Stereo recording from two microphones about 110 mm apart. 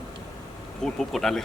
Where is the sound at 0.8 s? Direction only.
5° left (ahead or behind).